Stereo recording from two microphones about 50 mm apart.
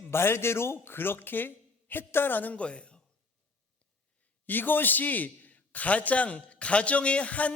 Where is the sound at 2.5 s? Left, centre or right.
Left.